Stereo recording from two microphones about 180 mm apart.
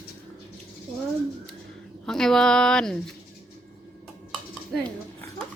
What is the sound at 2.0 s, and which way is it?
Speech, centre (ahead or behind).